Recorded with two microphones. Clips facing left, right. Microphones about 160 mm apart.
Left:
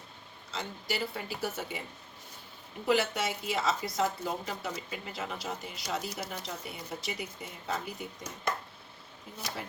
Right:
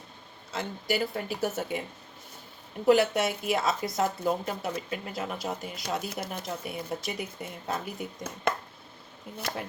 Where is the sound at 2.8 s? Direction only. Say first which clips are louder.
Right 6 dB; 50° right (ahead or behind).